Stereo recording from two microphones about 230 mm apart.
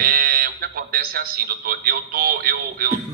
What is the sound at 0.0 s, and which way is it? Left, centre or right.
A man's voice, right.